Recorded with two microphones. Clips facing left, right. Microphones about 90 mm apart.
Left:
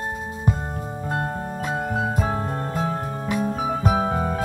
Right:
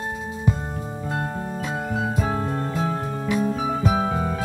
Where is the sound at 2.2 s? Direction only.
10° left (ahead or behind).